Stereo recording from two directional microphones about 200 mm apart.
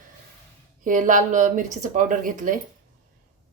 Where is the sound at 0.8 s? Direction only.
40° right (ahead or behind).